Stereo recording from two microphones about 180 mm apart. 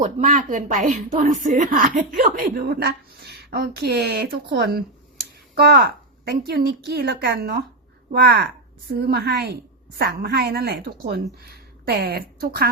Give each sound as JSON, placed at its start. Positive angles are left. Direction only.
{"t": 0.0, "sound": "a woman's voice", "side_deg": -45}
{"t": 2.6, "sound": "speech", "side_deg": -60}